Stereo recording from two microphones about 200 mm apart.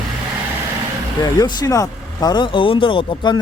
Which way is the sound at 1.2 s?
20° left (ahead or behind).